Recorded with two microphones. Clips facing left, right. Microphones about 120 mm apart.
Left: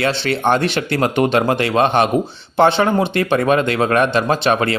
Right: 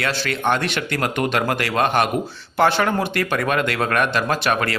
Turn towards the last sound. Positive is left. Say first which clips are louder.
# left 4 dB
turn(degrees=25)  # may be behind; listen again after turning